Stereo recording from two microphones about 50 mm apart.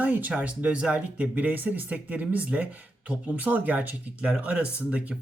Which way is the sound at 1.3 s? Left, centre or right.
Right.